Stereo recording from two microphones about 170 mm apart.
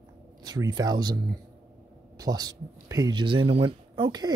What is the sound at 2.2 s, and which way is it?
Speech, 25° right (ahead or behind).